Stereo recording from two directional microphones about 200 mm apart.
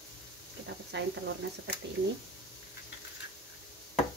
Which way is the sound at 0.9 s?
60° right (ahead or behind).